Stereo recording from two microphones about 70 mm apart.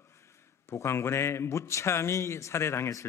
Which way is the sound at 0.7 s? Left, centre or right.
Left.